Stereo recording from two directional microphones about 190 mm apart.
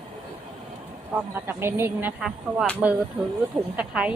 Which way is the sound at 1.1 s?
10° right (ahead or behind).